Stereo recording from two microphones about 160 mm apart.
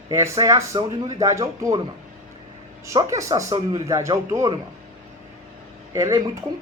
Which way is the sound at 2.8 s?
20° right (ahead or behind).